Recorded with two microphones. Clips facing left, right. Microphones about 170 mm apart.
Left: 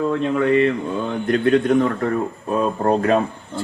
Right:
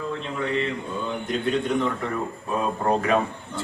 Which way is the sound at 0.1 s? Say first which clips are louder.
Left 8 dB; 60° left (ahead or behind).